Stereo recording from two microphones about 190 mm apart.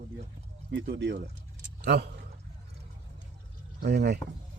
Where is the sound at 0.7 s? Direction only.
70° right (ahead or behind).